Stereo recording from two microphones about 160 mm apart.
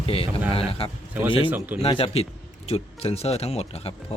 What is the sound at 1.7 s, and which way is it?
A man's voice, 35° left (ahead or behind).